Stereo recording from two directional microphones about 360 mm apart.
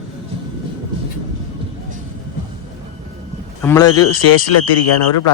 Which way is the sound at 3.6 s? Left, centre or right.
Centre.